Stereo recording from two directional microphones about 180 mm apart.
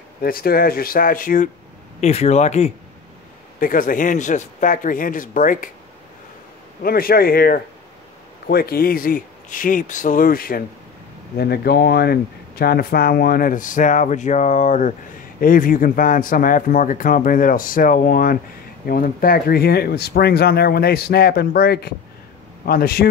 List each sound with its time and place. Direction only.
0.2 s speech: 55° left (ahead or behind)
2.0 s speech: 35° left (ahead or behind)
3.5 s speech: 50° left (ahead or behind)
6.8 s speech: 55° left (ahead or behind)